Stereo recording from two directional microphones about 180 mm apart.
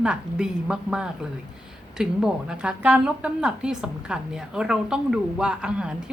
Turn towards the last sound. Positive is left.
turn(degrees=-5)  # may be behind; listen again after turning